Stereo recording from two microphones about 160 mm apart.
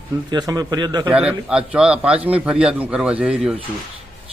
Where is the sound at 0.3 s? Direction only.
25° right (ahead or behind).